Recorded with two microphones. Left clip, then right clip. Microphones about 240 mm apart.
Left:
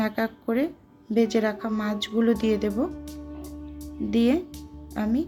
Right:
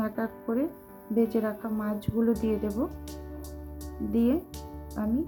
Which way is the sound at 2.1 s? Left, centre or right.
Centre.